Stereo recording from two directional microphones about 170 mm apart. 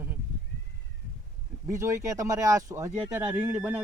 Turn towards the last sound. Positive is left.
turn(degrees=-10)  # may be behind; listen again after turning